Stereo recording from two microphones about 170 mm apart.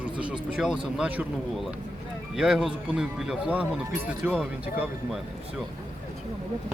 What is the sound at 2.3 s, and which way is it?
Speech, 5° right (ahead or behind).